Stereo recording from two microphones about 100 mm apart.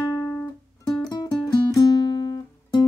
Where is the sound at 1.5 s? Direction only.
40° left (ahead or behind).